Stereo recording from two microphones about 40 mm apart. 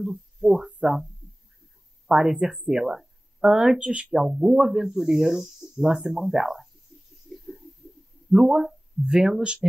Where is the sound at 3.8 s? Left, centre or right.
Right.